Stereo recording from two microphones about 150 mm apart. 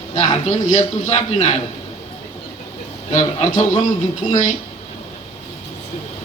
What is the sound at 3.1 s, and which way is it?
Speech, 50° left (ahead or behind).